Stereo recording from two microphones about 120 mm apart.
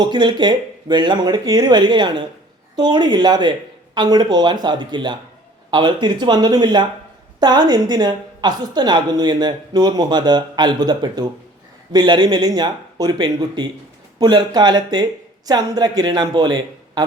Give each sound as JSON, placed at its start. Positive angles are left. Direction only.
{"t": 0.0, "sound": "a woman's voice", "side_deg": -40}